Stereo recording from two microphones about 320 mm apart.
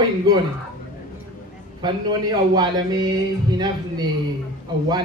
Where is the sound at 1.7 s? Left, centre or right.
Centre.